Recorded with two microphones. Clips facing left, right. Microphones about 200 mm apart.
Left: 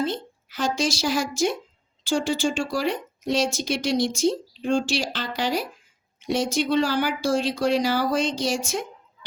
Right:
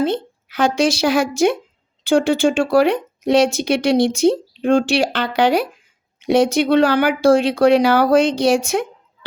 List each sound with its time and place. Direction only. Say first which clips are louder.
0.0 s a woman's voice: right 7 dB; 65° right (ahead or behind)